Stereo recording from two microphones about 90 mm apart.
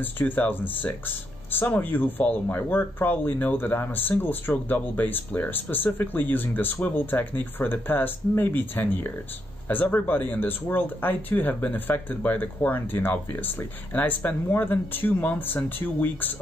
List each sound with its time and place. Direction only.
0.0 s speech: 20° left (ahead or behind)